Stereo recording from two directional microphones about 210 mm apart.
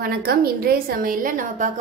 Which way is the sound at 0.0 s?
45° right (ahead or behind).